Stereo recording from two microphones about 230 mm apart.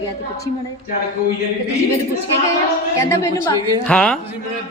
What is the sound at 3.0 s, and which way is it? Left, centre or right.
A man's voice, centre.